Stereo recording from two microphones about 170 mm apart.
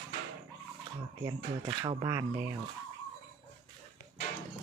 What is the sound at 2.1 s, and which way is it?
Speech, 20° right (ahead or behind).